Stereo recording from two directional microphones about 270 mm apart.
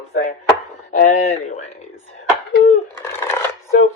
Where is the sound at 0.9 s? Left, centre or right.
Left.